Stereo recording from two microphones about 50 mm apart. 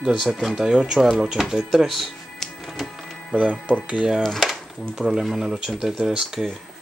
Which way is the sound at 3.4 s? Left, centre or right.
Right.